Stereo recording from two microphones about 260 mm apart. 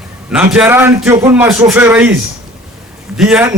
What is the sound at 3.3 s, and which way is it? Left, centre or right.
Speech, centre.